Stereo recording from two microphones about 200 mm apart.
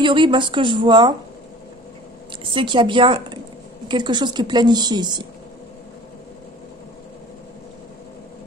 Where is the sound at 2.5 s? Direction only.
25° right (ahead or behind).